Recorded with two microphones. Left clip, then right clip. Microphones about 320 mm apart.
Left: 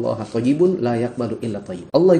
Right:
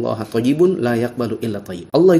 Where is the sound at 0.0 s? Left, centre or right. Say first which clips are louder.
Right 2 dB; right.